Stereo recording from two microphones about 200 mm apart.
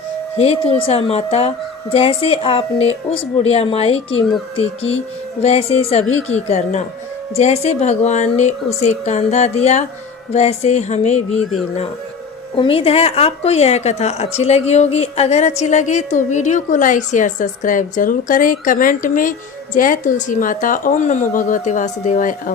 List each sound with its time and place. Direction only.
0.3 s a woman's voice: 30° left (ahead or behind)
12.5 s a woman's voice: 25° left (ahead or behind)